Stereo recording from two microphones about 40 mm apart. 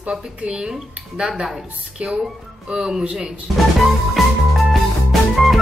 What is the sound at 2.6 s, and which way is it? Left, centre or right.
Speech, right.